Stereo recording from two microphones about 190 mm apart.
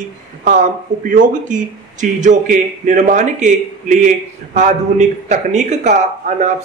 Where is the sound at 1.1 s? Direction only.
40° right (ahead or behind).